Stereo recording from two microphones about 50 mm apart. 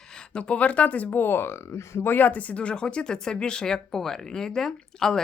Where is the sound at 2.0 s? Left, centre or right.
Left.